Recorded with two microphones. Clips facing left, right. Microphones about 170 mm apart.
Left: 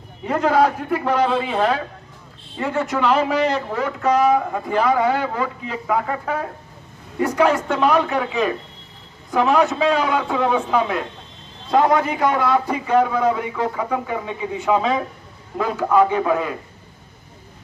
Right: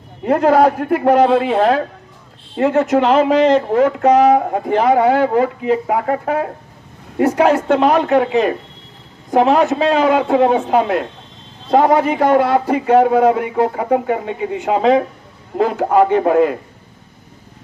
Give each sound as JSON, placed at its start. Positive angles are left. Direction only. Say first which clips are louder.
{"t": 0.2, "sound": "a man's voice", "louder": "right 5 dB", "side_deg": -50}
{"t": 2.5, "sound": "a man's voice", "louder": "right 9 dB", "side_deg": -60}